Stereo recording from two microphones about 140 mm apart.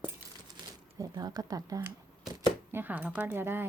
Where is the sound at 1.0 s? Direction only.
25° right (ahead or behind).